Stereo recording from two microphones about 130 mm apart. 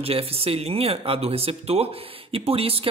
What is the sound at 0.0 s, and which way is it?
Speech, 50° right (ahead or behind).